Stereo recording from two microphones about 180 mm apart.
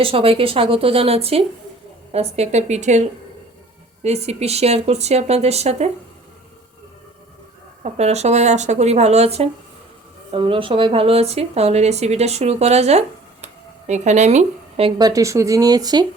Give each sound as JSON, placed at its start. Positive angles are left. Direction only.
{"t": 0.0, "sound": "speech", "side_deg": -30}
{"t": 7.9, "sound": "speech", "side_deg": -35}